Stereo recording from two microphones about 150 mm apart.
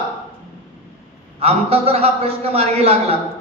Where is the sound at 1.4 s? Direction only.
45° right (ahead or behind).